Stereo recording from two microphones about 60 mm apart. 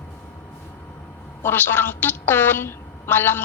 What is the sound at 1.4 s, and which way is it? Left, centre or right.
A woman's voice, left.